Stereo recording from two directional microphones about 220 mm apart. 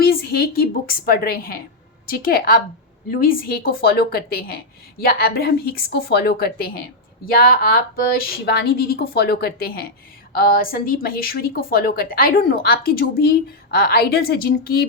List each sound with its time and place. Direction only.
0.0 s a woman's voice: 45° left (ahead or behind)